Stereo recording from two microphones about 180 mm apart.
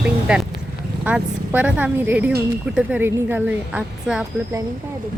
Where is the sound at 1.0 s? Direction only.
10° right (ahead or behind).